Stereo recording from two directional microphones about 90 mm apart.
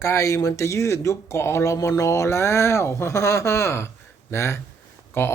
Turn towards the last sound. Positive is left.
turn(degrees=25)  # may be behind; listen again after turning